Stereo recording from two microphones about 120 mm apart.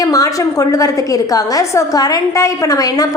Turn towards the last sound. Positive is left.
turn(degrees=30)  # may be behind; listen again after turning